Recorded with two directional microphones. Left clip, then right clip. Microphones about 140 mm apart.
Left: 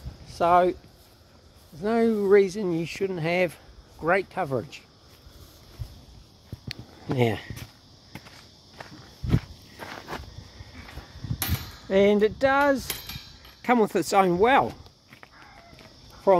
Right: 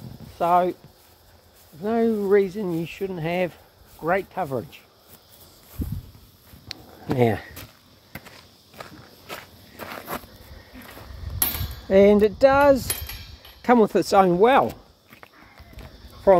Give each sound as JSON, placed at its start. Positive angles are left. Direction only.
{"t": 0.4, "sound": "speech", "side_deg": 70}
{"t": 1.8, "sound": "speech", "side_deg": 70}
{"t": 7.2, "sound": "speech", "side_deg": 15}
{"t": 8.8, "sound": "walk", "side_deg": -90}
{"t": 12.0, "sound": "speech", "side_deg": 35}
{"t": 12.5, "sound": "speech", "side_deg": 10}